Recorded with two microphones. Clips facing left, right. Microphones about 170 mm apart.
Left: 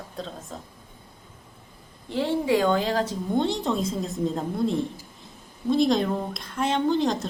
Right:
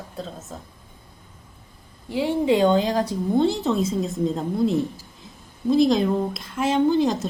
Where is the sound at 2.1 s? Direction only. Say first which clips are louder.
Right 2 dB; 10° right (ahead or behind).